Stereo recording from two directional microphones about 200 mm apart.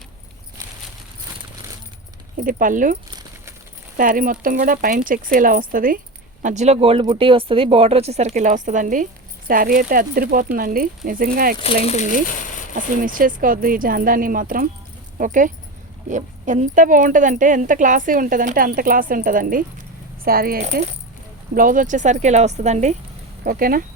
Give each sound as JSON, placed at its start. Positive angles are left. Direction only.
{"t": 2.4, "sound": "speech", "side_deg": -45}
{"t": 11.9, "sound": "speech", "side_deg": 40}
{"t": 12.7, "sound": "speech", "side_deg": -45}
{"t": 23.4, "sound": "speech", "side_deg": -45}